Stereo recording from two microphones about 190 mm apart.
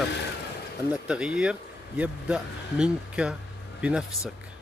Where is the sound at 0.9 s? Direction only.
5° right (ahead or behind).